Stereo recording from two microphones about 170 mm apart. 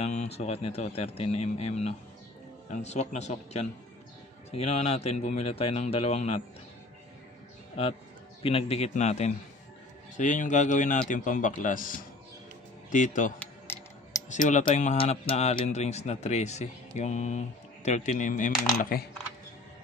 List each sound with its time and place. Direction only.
0.0 s a man's voice: 40° left (ahead or behind)
7.8 s a man's voice: 35° left (ahead or behind)
13.4 s music: 15° left (ahead or behind)
14.3 s a man's voice: 45° left (ahead or behind)